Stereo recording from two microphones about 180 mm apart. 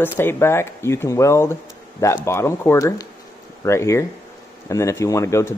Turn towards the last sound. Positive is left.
turn(degrees=15)  # may be behind; listen again after turning